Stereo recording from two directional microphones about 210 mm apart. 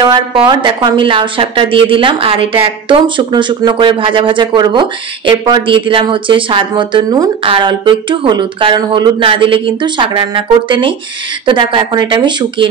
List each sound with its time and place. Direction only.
0.0 s a woman's voice: 20° right (ahead or behind)